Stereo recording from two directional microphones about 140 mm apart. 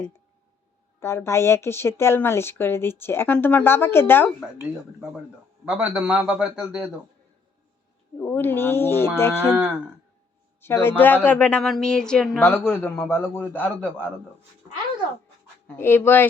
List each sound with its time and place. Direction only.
0.9 s speech: 20° left (ahead or behind)
5.6 s a man's voice: 10° right (ahead or behind)
8.2 s speech: 15° left (ahead or behind)
10.6 s speech: 15° left (ahead or behind)
12.4 s speech: 15° left (ahead or behind)
15.6 s speech: 15° left (ahead or behind)